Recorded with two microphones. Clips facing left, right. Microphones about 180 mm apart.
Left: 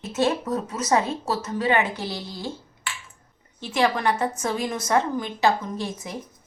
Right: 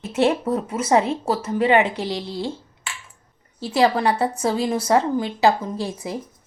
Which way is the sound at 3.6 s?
35° right (ahead or behind).